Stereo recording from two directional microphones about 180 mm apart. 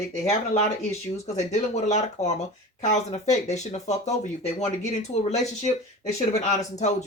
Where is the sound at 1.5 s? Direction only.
40° left (ahead or behind).